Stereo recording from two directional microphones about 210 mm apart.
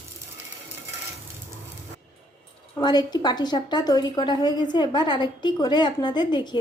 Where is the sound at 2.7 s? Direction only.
20° left (ahead or behind).